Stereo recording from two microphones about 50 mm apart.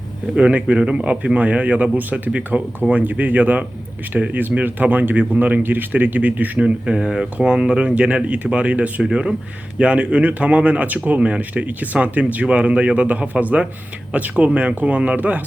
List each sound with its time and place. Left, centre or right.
0.3 s speech: right
6.7 s speech: centre
9.0 s speech: centre
9.7 s speech: right